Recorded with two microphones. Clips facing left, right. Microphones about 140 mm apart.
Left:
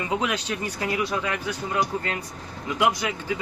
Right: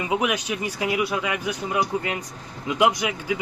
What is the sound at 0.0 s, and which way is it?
Speech, 15° right (ahead or behind).